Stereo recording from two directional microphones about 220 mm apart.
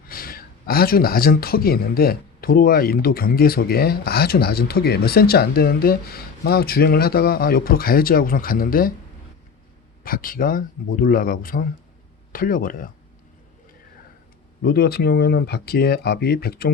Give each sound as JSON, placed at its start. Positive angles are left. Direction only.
{"t": 0.1, "sound": "speech", "side_deg": 40}
{"t": 10.0, "sound": "speech", "side_deg": 40}
{"t": 14.6, "sound": "speech", "side_deg": 45}